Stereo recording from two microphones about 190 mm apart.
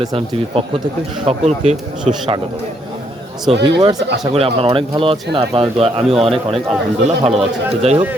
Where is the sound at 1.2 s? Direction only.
35° right (ahead or behind).